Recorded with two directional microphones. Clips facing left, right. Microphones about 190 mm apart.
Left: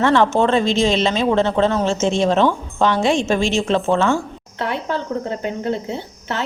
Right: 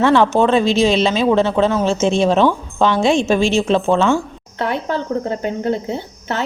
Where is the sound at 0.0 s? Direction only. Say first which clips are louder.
Right 2 dB; 10° right (ahead or behind).